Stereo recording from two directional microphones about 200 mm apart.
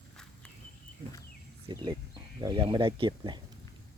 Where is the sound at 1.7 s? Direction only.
20° right (ahead or behind).